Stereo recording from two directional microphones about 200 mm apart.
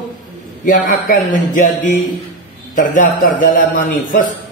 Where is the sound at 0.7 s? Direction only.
40° left (ahead or behind).